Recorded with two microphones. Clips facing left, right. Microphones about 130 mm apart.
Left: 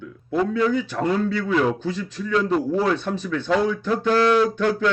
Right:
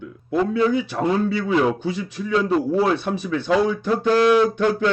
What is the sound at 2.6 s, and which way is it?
A man's voice, 10° right (ahead or behind).